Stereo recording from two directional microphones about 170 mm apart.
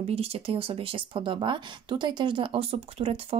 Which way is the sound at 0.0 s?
35° right (ahead or behind).